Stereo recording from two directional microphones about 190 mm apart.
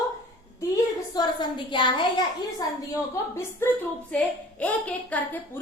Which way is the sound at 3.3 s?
10° left (ahead or behind).